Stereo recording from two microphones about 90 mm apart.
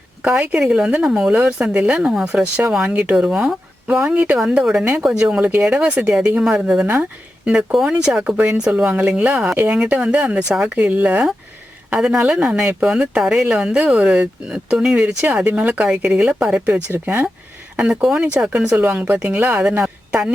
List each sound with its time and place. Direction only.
0.2 s speech: 10° right (ahead or behind)
16.9 s speech: 20° right (ahead or behind)
17.7 s a woman's voice: 10° right (ahead or behind)